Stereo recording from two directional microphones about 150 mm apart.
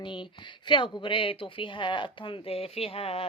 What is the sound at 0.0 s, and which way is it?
A woman's voice, 30° left (ahead or behind).